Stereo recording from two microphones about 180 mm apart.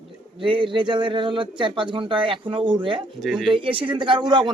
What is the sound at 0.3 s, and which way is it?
Speech, 30° right (ahead or behind).